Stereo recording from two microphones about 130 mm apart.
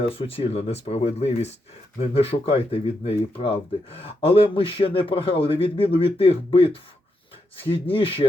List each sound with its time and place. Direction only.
0.0 s speech: 45° left (ahead or behind)
7.7 s speech: 45° left (ahead or behind)